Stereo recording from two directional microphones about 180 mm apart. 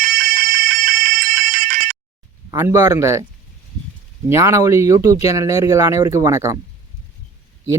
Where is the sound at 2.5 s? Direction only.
15° right (ahead or behind).